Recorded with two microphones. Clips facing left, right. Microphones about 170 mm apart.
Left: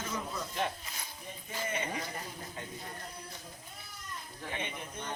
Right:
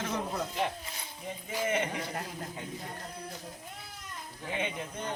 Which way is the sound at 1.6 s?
75° right (ahead or behind).